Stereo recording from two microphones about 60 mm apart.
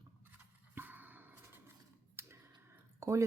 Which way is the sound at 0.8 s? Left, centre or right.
Right.